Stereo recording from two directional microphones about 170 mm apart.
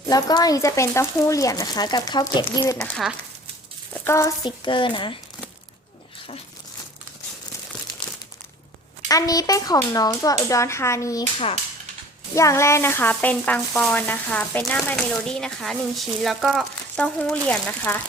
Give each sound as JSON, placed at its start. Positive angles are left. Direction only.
{"t": 0.1, "sound": "speech", "side_deg": 20}
{"t": 2.7, "sound": "speech", "side_deg": 5}
{"t": 4.0, "sound": "speech", "side_deg": 15}
{"t": 4.6, "sound": "speech", "side_deg": 30}
{"t": 8.0, "sound": "crumpling", "side_deg": 25}
{"t": 9.0, "sound": "speech", "side_deg": 20}
{"t": 12.3, "sound": "speech", "side_deg": 15}
{"t": 17.0, "sound": "speech", "side_deg": 10}